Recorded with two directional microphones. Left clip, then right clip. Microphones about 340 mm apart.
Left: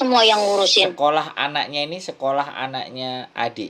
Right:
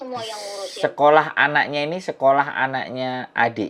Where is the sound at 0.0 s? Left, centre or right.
Left.